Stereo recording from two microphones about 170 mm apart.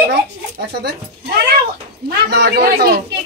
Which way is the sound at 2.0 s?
75° right (ahead or behind).